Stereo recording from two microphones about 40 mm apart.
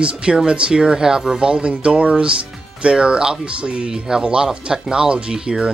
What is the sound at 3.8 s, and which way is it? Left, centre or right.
Speech, centre.